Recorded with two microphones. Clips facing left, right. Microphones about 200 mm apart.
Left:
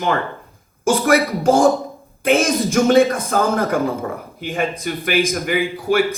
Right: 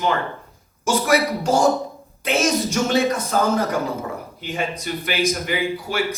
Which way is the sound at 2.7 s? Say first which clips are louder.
Left 6 dB; 50° left (ahead or behind).